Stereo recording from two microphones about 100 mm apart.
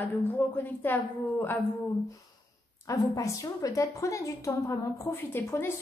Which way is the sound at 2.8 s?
35° left (ahead or behind).